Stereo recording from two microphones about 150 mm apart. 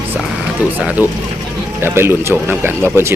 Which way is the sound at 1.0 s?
10° right (ahead or behind).